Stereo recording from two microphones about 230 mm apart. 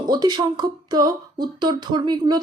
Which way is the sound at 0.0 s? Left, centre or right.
Centre.